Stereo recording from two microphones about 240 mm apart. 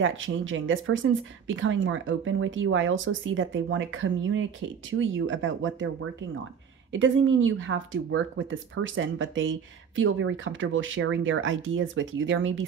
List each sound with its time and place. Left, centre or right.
0.0 s speech: right